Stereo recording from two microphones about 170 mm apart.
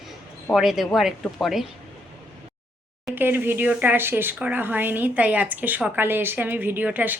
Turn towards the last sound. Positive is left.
turn(degrees=-10)  # may be behind; listen again after turning